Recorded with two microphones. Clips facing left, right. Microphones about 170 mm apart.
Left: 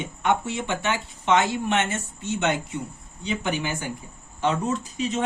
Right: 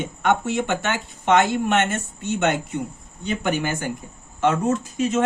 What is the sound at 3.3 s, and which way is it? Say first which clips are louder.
Speech: right 3 dB; 50° right (ahead or behind).